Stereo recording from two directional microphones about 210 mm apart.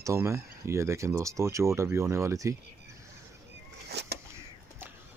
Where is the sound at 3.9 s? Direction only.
50° right (ahead or behind).